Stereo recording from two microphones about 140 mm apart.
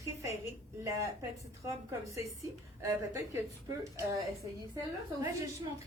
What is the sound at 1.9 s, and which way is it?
Speech, 20° right (ahead or behind).